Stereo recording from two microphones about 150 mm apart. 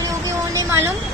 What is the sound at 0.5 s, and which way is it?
Speech, 15° right (ahead or behind).